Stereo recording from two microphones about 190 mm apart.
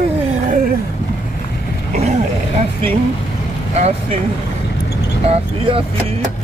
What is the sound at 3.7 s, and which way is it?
Speech, 35° right (ahead or behind).